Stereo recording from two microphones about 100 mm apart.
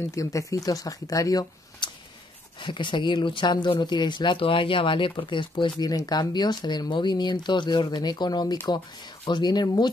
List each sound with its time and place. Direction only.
0.1 s speech: 30° left (ahead or behind)
1.8 s a sound: 50° left (ahead or behind)
2.6 s speech: 50° left (ahead or behind)